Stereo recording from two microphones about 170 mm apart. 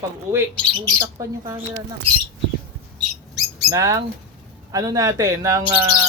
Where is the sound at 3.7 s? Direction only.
20° right (ahead or behind).